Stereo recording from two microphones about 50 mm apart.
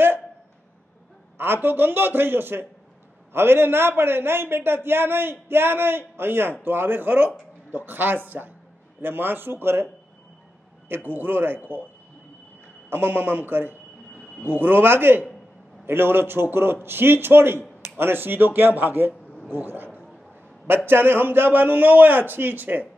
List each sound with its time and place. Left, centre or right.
1.4 s a man's voice: right
11.1 s a man's voice: right
12.9 s a man's voice: right